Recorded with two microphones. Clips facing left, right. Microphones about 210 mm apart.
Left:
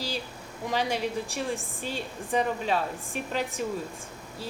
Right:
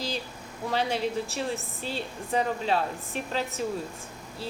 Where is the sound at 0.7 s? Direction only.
10° left (ahead or behind).